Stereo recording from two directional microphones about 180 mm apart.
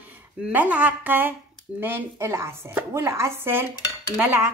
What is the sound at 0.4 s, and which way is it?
Speech, 10° right (ahead or behind).